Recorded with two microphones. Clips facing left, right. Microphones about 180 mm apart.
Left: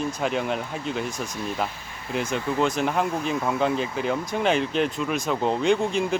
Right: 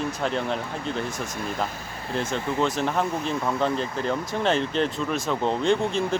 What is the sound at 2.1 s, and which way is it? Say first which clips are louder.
Speech: left 1 dB; centre (ahead or behind).